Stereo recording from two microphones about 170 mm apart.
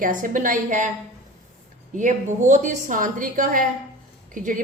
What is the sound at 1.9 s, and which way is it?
A woman's voice, 45° right (ahead or behind).